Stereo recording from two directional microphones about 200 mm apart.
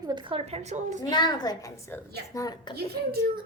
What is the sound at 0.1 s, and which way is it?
A woman's voice, 25° right (ahead or behind).